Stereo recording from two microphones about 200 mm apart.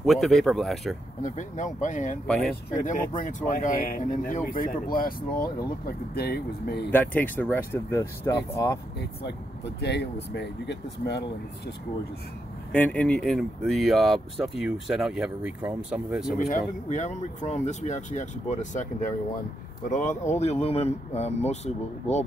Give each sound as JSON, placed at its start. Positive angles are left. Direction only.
{"t": 0.0, "sound": "speech", "side_deg": 0}
{"t": 1.2, "sound": "speech", "side_deg": 40}
{"t": 2.2, "sound": "speech", "side_deg": 5}
{"t": 3.3, "sound": "speech", "side_deg": 40}
{"t": 6.9, "sound": "speech", "side_deg": 10}
{"t": 9.8, "sound": "speech", "side_deg": 55}
{"t": 12.7, "sound": "speech", "side_deg": 10}
{"t": 16.3, "sound": "speech", "side_deg": 40}